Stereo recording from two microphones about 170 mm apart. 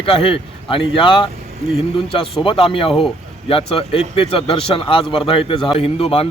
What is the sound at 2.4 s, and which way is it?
A man's voice, 30° left (ahead or behind).